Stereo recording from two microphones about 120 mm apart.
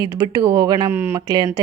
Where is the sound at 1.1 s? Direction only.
30° right (ahead or behind).